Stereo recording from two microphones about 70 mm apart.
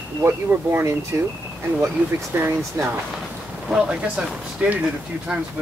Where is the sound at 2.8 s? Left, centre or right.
Right.